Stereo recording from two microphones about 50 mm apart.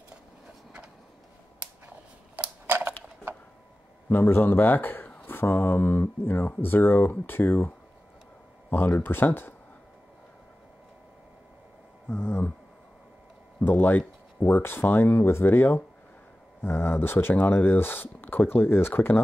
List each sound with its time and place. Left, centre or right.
2.6 s a sound: right
4.1 s speech: left
12.1 s speech: left
13.6 s speech: left